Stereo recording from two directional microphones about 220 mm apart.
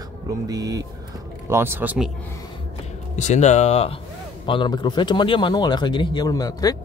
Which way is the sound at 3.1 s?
30° left (ahead or behind).